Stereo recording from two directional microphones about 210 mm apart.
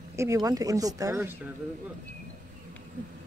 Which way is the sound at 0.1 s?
15° right (ahead or behind).